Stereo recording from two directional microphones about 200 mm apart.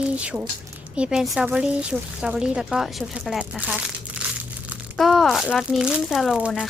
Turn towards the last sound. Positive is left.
turn(degrees=0)  # may be behind; listen again after turning